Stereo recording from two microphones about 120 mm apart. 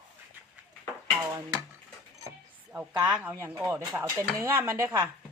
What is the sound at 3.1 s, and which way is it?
Speech, 10° right (ahead or behind).